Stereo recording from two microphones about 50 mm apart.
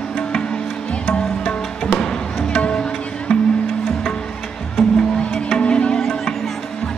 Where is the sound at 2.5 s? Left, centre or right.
Centre.